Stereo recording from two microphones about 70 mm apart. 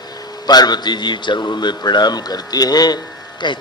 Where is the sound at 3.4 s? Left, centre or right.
Left.